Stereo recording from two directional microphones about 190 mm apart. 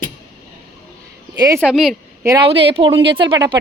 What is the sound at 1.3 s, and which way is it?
Speech, 20° right (ahead or behind).